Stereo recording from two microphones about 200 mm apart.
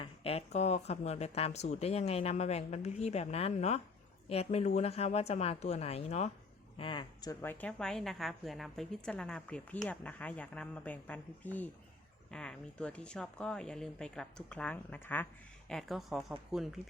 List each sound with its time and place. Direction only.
0.0 s a woman's voice: 30° left (ahead or behind); by 15.3 s 10° left (ahead or behind)
15.7 s a woman's voice: centre (ahead or behind)